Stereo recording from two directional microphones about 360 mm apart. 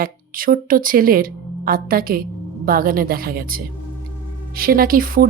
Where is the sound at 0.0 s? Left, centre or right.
Right.